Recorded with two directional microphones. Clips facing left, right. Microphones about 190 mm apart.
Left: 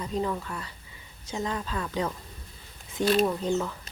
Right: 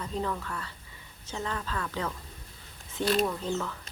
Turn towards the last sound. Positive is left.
turn(degrees=15)  # may be behind; listen again after turning